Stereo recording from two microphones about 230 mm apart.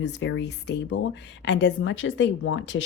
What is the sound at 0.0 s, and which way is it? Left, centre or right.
A woman's voice, left.